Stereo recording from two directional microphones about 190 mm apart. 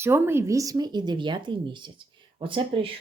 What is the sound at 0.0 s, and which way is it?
Speech, 10° right (ahead or behind).